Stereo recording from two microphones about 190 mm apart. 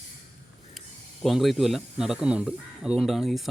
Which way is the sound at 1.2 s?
Centre (ahead or behind).